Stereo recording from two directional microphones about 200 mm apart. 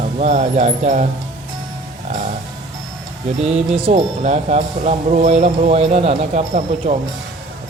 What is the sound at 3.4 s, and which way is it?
Speech, 30° right (ahead or behind).